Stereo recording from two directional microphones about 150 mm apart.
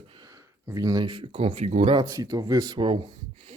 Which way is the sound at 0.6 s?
25° right (ahead or behind).